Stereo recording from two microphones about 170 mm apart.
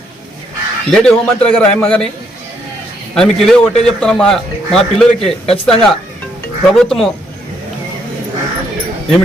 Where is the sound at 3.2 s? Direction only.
5° left (ahead or behind).